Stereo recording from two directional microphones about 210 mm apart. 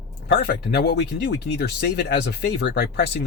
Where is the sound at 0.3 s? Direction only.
50° left (ahead or behind).